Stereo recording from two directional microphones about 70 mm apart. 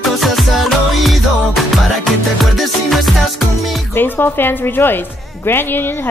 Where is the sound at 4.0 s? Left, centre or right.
Left.